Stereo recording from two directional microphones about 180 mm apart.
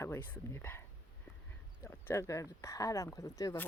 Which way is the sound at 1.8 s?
15° left (ahead or behind).